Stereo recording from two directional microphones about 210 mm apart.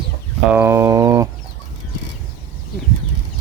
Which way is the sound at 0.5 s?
10° right (ahead or behind).